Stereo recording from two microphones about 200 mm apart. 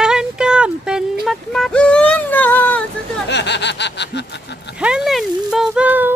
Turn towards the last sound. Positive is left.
turn(degrees=-10)  # may be behind; listen again after turning